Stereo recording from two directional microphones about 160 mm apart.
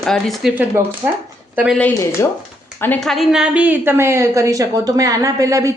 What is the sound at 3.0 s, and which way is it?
A woman's voice, centre (ahead or behind).